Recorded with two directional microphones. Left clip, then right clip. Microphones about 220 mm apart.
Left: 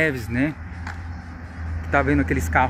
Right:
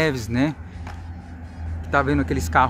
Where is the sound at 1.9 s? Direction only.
10° right (ahead or behind).